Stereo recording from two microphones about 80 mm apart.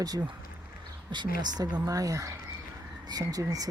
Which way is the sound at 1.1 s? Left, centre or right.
Right.